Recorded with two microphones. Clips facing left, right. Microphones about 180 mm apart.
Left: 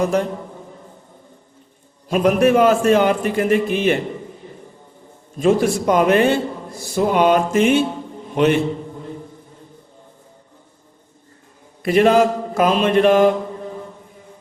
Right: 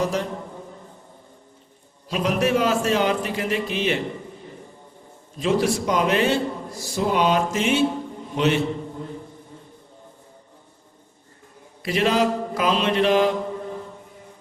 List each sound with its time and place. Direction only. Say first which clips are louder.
0.0 s a man's voice: left 6 dB; 50° left (ahead or behind)
2.0 s a man's voice: left 7 dB; 50° left (ahead or behind)
5.4 s a man's voice: left 5 dB; 50° left (ahead or behind)
6.8 s a sound: left 5 dB; 55° left (ahead or behind)
11.8 s a man's voice: left 7 dB; 50° left (ahead or behind)